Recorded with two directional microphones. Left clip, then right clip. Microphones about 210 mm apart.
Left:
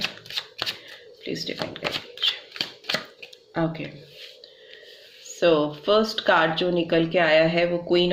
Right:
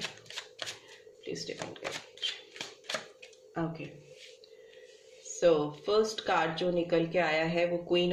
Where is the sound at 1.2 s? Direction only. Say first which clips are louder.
Left 8 dB; 35° left (ahead or behind).